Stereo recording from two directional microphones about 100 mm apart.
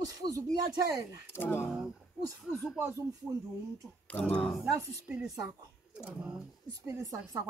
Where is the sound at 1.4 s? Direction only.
20° left (ahead or behind).